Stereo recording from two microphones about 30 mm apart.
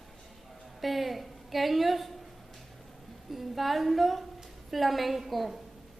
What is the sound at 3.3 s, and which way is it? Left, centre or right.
A woman's voice, centre.